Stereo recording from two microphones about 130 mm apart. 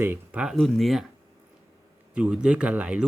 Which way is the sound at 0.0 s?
20° right (ahead or behind).